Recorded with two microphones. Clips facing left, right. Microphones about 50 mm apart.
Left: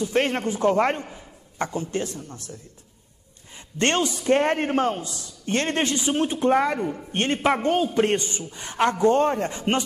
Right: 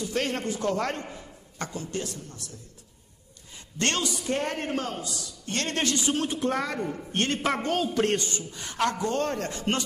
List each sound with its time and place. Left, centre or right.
0.0 s a man's voice: left
3.5 s a man's voice: left